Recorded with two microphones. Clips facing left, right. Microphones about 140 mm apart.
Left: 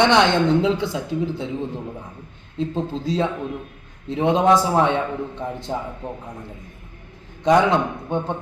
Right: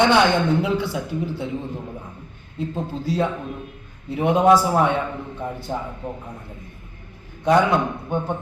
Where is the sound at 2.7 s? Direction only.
25° left (ahead or behind).